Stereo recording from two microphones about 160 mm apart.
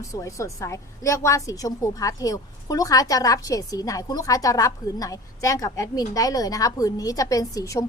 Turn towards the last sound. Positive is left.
turn(degrees=20)  # may be behind; listen again after turning